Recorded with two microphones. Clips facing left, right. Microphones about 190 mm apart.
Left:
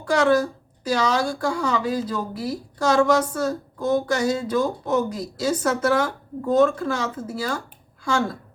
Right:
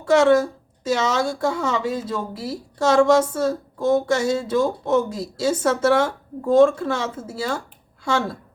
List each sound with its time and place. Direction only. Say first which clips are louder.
0.0 s a woman's voice: right 3 dB; 25° right (ahead or behind)